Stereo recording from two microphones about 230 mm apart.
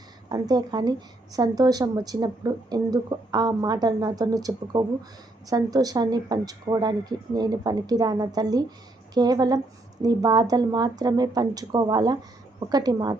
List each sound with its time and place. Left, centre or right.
0.3 s a woman's voice: centre